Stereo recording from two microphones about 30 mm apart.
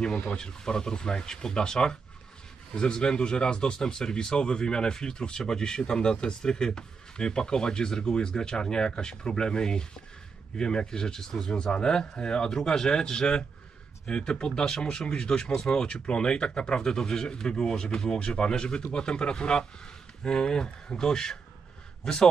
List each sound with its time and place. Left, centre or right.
0.4 s speech: left
11.5 s a man's voice: left